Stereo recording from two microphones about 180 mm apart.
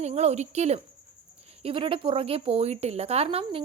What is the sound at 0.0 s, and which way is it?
A woman's voice, 35° right (ahead or behind).